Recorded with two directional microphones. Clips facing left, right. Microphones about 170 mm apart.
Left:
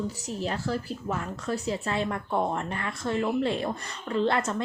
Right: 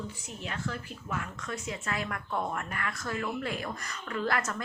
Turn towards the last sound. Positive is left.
turn(degrees=25)  # may be behind; listen again after turning